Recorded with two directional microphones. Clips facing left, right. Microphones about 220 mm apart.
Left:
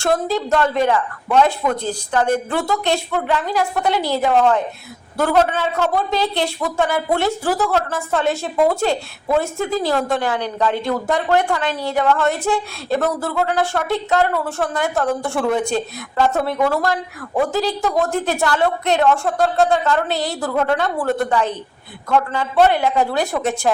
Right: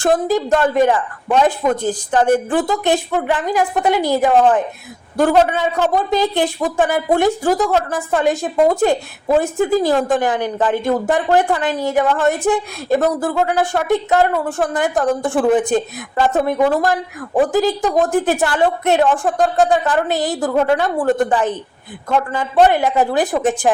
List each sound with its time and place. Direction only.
0.0 s a woman's voice: 15° right (ahead or behind)